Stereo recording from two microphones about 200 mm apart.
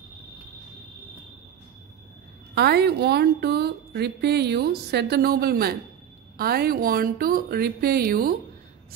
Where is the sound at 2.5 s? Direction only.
55° right (ahead or behind).